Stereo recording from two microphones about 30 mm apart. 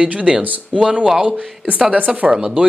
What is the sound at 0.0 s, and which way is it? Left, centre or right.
Speech, right.